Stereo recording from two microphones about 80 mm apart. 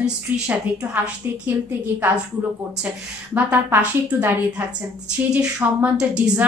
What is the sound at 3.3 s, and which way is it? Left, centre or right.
A woman's voice, right.